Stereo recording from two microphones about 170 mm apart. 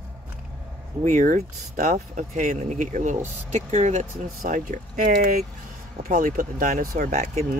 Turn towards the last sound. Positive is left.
turn(degrees=-45)  # may be behind; listen again after turning